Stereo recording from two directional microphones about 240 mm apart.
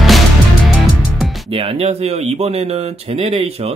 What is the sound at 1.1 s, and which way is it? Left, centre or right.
Music, centre.